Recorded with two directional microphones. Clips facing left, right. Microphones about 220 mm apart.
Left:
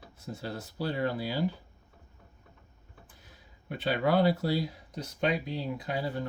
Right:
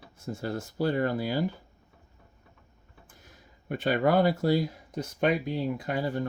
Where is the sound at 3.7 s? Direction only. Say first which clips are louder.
Right 3 dB; 45° right (ahead or behind).